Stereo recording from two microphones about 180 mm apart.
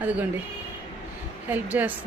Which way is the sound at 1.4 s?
10° right (ahead or behind).